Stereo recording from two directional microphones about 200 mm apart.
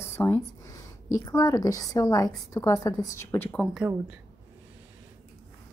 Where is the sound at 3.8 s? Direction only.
10° right (ahead or behind).